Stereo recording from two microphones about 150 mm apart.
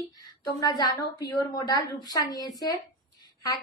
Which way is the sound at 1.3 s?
30° left (ahead or behind).